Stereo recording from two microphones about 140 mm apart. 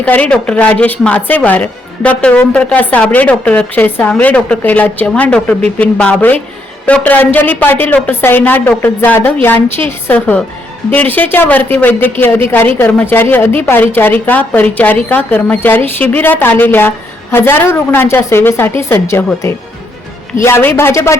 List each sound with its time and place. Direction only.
0.0 s a woman's voice: 10° left (ahead or behind)